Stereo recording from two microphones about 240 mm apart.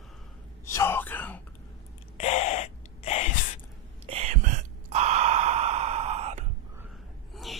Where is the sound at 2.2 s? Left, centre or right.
Left.